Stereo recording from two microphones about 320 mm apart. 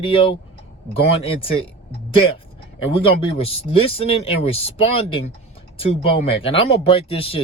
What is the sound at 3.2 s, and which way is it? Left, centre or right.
Speech, centre.